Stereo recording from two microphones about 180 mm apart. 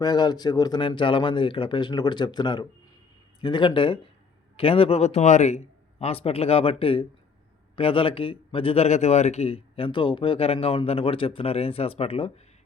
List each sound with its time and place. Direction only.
0.0 s a man's voice: 20° left (ahead or behind)